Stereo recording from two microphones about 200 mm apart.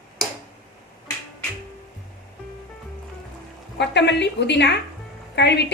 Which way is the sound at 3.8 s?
60° left (ahead or behind).